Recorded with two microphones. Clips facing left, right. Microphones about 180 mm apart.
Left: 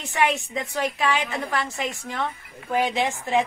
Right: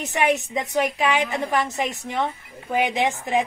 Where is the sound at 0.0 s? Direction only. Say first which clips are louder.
Right 2 dB; 20° right (ahead or behind).